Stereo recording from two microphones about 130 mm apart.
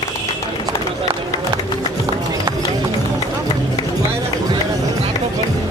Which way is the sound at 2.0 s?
25° right (ahead or behind).